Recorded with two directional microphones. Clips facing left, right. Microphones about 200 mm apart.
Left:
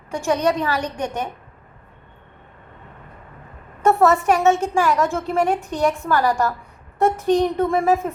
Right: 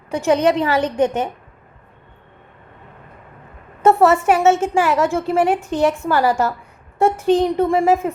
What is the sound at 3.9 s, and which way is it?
A woman's voice, 15° right (ahead or behind).